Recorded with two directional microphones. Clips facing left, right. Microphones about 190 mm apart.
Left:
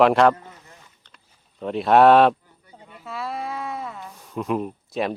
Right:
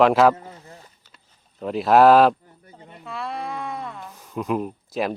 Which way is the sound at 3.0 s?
Centre (ahead or behind).